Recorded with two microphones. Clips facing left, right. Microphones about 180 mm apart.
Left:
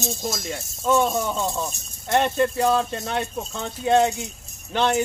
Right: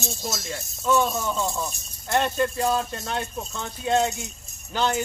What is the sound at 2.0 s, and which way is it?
Speech, 20° left (ahead or behind).